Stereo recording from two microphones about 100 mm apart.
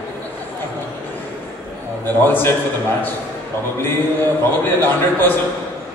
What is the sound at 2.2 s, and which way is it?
Speech, 20° left (ahead or behind).